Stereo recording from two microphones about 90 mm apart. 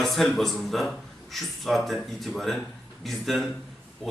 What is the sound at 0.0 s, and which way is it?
A man's voice, 5° left (ahead or behind).